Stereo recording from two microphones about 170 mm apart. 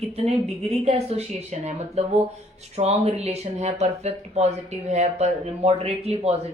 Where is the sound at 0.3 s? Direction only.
40° right (ahead or behind).